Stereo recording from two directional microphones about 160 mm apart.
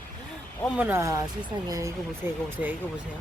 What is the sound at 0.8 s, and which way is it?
Speech, 15° right (ahead or behind).